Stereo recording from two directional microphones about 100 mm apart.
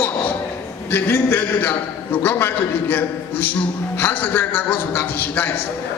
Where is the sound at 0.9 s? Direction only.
20° left (ahead or behind).